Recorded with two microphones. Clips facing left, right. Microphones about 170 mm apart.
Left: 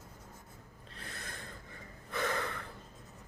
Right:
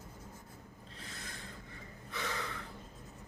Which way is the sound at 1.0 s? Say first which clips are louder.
Left 2 dB; 60° left (ahead or behind).